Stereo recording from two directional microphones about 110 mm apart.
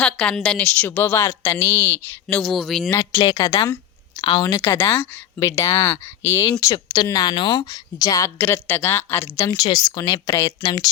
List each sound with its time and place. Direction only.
0.0 s speech: 10° left (ahead or behind)
2.2 s speech: 5° left (ahead or behind)
3.1 s a woman's voice: 50° left (ahead or behind)
3.3 s speech: 30° left (ahead or behind)
4.2 s a woman's voice: 45° left (ahead or behind)
4.6 s speech: 20° left (ahead or behind)
10.6 s speech: 40° left (ahead or behind)